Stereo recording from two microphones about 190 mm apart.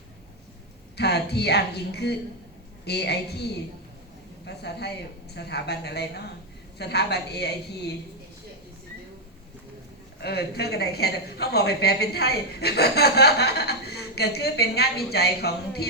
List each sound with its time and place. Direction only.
0.9 s a woman's voice: 60° left (ahead or behind)
4.4 s a woman's voice: 60° left (ahead or behind)
10.2 s a woman's voice: 60° left (ahead or behind)